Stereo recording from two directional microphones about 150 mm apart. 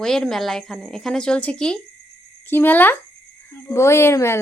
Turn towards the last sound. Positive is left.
turn(degrees=15)  # may be behind; listen again after turning